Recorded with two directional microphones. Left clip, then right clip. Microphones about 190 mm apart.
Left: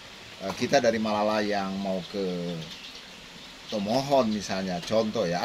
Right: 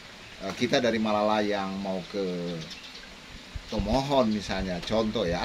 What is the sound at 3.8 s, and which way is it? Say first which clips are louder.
Speech: left 1 dB; 20° right (ahead or behind).